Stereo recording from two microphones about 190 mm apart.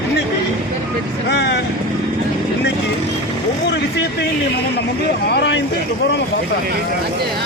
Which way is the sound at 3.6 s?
60° left (ahead or behind).